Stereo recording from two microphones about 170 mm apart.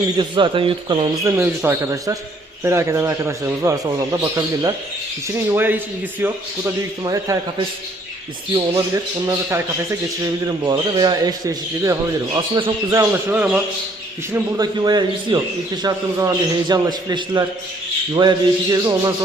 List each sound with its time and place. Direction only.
0.2 s a man's voice: 30° right (ahead or behind)
1.3 s a man's voice: 15° right (ahead or behind)
7.0 s a man's voice: 20° right (ahead or behind)
9.2 s a man's voice: 20° right (ahead or behind)
12.9 s a man's voice: 15° right (ahead or behind)
14.3 s a man's voice: 25° right (ahead or behind)